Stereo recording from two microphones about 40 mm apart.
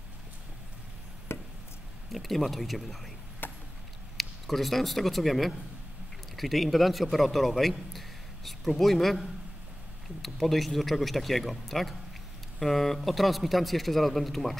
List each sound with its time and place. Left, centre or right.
1.3 s chop: left
2.1 s speech: centre
3.4 s chop: left
4.2 s speech: centre
10.2 s speech: centre